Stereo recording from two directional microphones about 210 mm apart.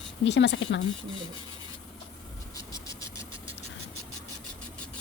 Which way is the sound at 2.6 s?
15° left (ahead or behind).